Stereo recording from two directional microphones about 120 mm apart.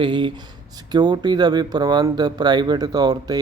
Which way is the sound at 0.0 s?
40° right (ahead or behind).